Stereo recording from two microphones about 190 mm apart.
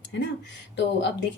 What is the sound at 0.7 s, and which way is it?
Speech, 65° left (ahead or behind).